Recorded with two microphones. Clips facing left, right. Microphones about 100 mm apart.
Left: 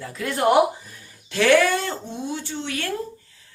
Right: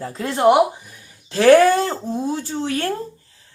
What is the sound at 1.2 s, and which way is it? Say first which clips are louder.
Speech: right 6 dB; 35° right (ahead or behind).